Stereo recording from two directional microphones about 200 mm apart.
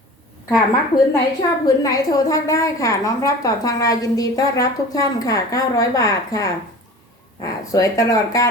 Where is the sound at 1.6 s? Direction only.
20° left (ahead or behind).